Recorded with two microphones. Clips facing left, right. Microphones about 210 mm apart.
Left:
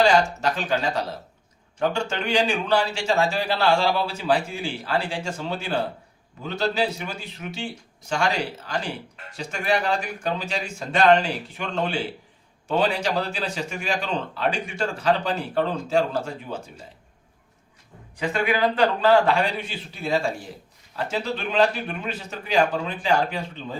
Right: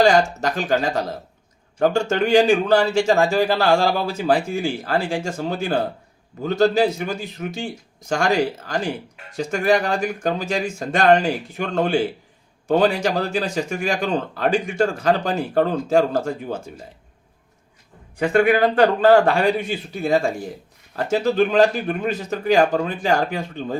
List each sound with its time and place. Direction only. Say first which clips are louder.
0.0 s speech: right 3 dB; 45° right (ahead or behind)
18.2 s speech: right 7 dB; 55° right (ahead or behind)